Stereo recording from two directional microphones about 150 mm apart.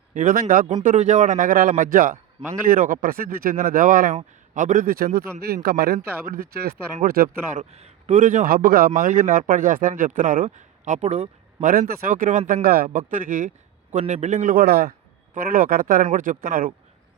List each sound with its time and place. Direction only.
0.1 s speech: 60° right (ahead or behind)
0.8 s speech: 55° right (ahead or behind); by 3.5 s 80° right
3.6 s speech: 65° right (ahead or behind); by 7.3 s 90° right
7.5 s speech: 50° right (ahead or behind); by 8.9 s 85° right
9.0 s speech: 65° right (ahead or behind)
11.7 s speech: 70° right (ahead or behind)
12.6 s a man's voice: 85° right
13.1 s speech: 60° right (ahead or behind); by 14.9 s 90° right
15.4 s speech: 70° right (ahead or behind)